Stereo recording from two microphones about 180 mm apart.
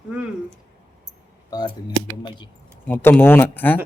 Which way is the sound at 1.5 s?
20° left (ahead or behind).